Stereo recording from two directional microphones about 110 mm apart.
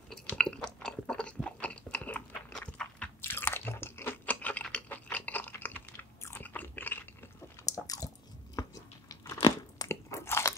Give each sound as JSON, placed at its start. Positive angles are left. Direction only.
{"t": 0.1, "sound": "chewing", "side_deg": 10}
{"t": 4.6, "sound": "a sound", "side_deg": 15}
{"t": 5.9, "sound": "biting", "side_deg": 20}
{"t": 7.6, "sound": "biting", "side_deg": 35}